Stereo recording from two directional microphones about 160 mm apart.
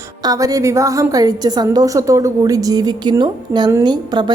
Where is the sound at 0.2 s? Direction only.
20° right (ahead or behind).